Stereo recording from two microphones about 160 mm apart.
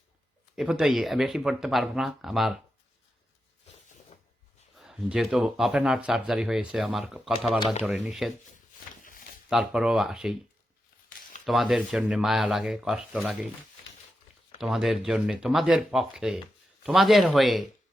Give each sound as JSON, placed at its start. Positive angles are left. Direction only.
{"t": 0.5, "sound": "speech", "side_deg": 0}
{"t": 4.8, "sound": "speech", "side_deg": 0}
{"t": 9.0, "sound": "a sound", "side_deg": 60}
{"t": 9.5, "sound": "speech", "side_deg": 0}
{"t": 11.4, "sound": "speech", "side_deg": 0}
{"t": 14.6, "sound": "speech", "side_deg": 0}